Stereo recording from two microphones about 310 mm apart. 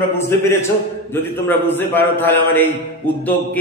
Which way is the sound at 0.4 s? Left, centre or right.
Centre.